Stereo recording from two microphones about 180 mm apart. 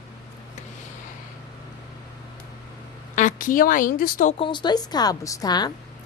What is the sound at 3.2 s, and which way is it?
A woman's voice, 45° left (ahead or behind).